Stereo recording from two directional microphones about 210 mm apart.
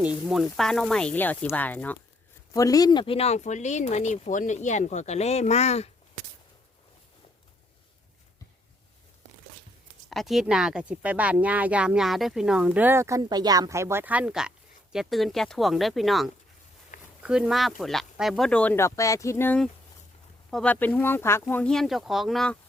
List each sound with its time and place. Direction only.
0.0 s speech: 5° right (ahead or behind); by 5.9 s 30° left (ahead or behind)
10.1 s speech: centre (ahead or behind)
16.9 s a sound: 40° left (ahead or behind)
17.2 s speech: 5° right (ahead or behind)